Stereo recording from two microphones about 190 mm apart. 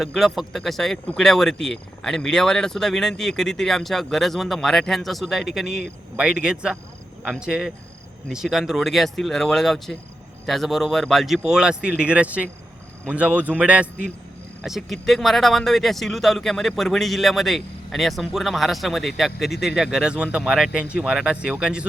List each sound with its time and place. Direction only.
0.0 s speech: centre (ahead or behind)